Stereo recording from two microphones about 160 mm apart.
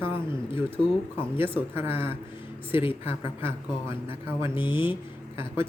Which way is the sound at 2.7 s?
35° left (ahead or behind).